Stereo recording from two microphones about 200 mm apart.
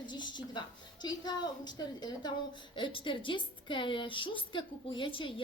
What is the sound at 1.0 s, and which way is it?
A woman's voice, 20° left (ahead or behind).